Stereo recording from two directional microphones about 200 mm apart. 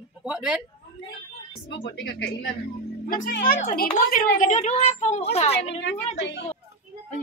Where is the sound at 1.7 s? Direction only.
60° left (ahead or behind).